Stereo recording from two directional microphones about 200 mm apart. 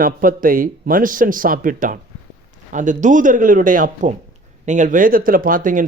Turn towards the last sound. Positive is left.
turn(degrees=-45)  # may be behind; listen again after turning